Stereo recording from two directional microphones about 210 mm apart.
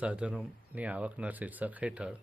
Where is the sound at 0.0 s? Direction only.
5° right (ahead or behind).